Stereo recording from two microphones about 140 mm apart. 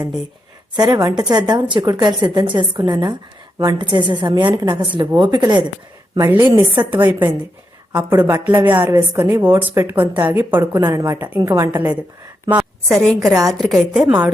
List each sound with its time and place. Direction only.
0.8 s a woman's voice: 30° right (ahead or behind)
6.1 s a woman's voice: 20° right (ahead or behind)
10.8 s a woman's voice: 30° right (ahead or behind)
11.0 s a woman's voice: 15° right (ahead or behind)
14.0 s a woman's voice: 25° right (ahead or behind)